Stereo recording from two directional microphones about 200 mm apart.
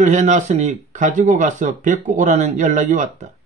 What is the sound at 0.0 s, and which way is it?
Speech, 35° right (ahead or behind).